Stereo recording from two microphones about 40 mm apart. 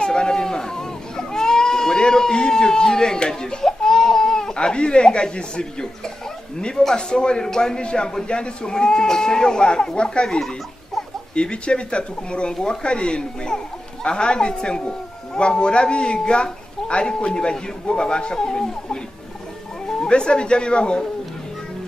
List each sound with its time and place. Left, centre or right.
0.0 s baby cry: centre
6.6 s a man's voice: centre
11.3 s a man's voice: left
20.0 s a man's voice: left